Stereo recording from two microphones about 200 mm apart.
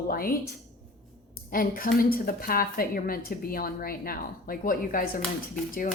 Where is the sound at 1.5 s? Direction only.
45° left (ahead or behind).